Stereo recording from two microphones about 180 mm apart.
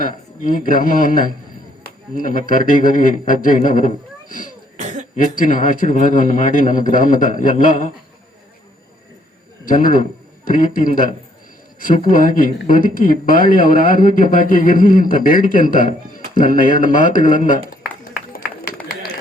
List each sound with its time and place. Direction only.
0.0 s speech: 50° left (ahead or behind)
4.8 s cough: 40° right (ahead or behind)
5.1 s speech: 50° left (ahead or behind)
9.6 s a man's voice: 50° left (ahead or behind)